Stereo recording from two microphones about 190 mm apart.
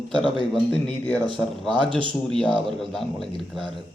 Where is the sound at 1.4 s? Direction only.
5° left (ahead or behind).